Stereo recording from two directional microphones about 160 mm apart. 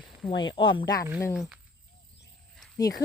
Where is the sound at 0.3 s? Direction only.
30° left (ahead or behind).